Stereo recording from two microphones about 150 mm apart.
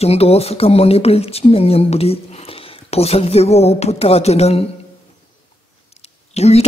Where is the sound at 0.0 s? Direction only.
45° left (ahead or behind).